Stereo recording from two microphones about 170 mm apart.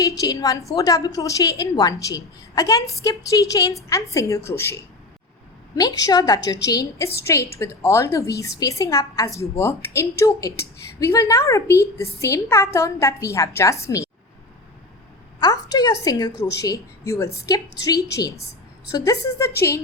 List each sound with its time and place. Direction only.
0.2 s a woman's voice: 20° left (ahead or behind)
15.4 s a woman's voice: 20° left (ahead or behind)